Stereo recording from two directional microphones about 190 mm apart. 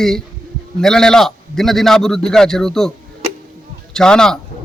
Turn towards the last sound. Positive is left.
turn(degrees=5)  # may be behind; listen again after turning